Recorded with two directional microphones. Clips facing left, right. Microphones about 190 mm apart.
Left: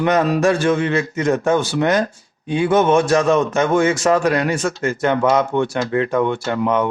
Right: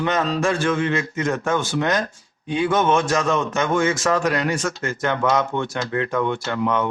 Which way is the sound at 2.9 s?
30° left (ahead or behind).